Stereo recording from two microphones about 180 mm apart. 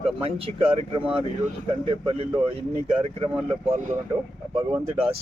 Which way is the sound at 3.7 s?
45° right (ahead or behind).